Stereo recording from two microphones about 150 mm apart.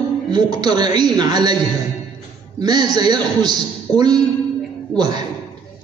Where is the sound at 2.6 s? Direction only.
25° right (ahead or behind).